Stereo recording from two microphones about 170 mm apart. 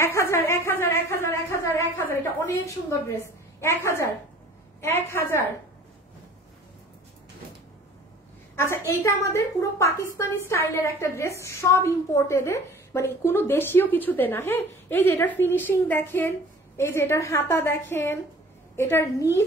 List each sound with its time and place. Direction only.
0.0 s a sound: 15° left (ahead or behind)
4.8 s a woman's voice: 15° left (ahead or behind)
8.5 s a woman's voice: 15° left (ahead or behind)